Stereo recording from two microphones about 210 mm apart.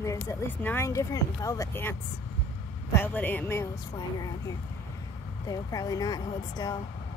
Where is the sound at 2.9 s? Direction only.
10° left (ahead or behind).